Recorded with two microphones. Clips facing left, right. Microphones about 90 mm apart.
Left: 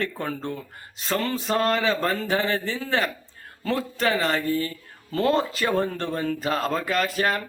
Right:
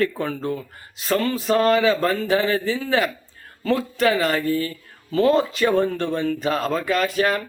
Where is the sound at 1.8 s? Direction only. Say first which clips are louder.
Right 4 dB; 35° left (ahead or behind).